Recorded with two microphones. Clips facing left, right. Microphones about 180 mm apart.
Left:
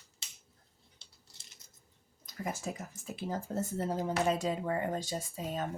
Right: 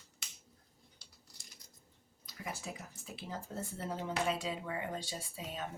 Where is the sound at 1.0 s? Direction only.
25° left (ahead or behind).